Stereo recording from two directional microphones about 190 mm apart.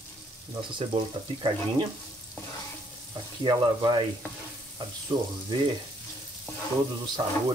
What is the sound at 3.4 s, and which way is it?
Speech, 25° right (ahead or behind).